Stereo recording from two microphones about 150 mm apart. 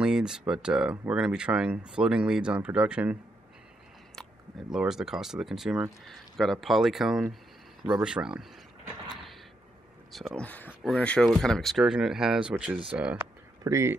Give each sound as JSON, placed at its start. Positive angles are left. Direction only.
{"t": 0.0, "sound": "speech", "side_deg": -5}
{"t": 4.7, "sound": "speech", "side_deg": -5}
{"t": 10.1, "sound": "speech", "side_deg": 5}